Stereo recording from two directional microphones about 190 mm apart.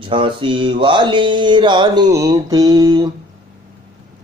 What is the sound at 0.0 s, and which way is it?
Mantra, 25° right (ahead or behind).